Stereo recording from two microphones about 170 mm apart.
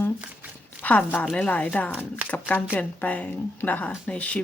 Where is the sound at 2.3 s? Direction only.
10° left (ahead or behind).